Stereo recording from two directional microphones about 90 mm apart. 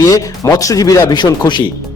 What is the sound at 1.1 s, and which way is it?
Speech, 55° left (ahead or behind).